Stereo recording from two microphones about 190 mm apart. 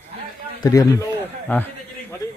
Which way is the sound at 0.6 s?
20° left (ahead or behind).